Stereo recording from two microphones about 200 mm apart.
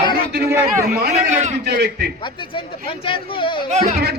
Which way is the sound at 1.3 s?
35° right (ahead or behind).